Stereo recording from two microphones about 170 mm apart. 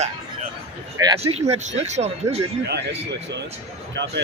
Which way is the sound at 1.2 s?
35° right (ahead or behind).